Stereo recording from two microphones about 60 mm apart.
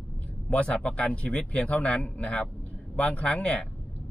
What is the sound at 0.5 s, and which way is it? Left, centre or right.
Speech, left.